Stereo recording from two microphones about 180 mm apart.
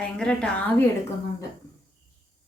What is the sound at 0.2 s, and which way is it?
Speech, 5° left (ahead or behind).